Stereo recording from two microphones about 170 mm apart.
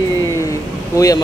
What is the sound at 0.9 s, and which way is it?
Speech, 20° left (ahead or behind).